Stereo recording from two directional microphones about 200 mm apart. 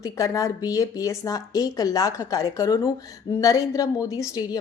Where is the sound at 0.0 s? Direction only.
15° left (ahead or behind).